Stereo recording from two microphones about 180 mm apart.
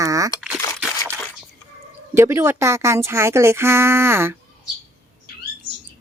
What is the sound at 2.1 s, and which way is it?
Speech, 15° right (ahead or behind).